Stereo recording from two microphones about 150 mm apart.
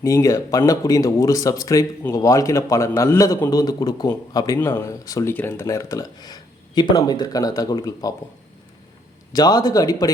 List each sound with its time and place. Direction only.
0.0 s speech: 20° left (ahead or behind)
9.3 s speech: 25° left (ahead or behind)